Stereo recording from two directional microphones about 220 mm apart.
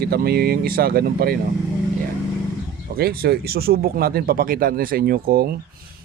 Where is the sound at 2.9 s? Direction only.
45° right (ahead or behind).